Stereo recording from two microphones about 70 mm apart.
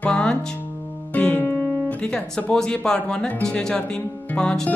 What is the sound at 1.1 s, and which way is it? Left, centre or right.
Music, left.